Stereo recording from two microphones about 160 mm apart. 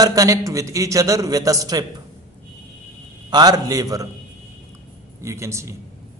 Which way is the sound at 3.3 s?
25° right (ahead or behind).